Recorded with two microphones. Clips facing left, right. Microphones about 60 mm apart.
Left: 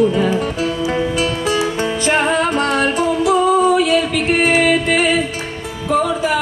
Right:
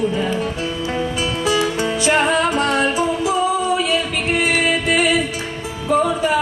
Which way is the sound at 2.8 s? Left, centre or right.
Left.